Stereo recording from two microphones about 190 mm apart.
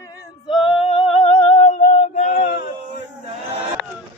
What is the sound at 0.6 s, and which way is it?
Music, 25° left (ahead or behind).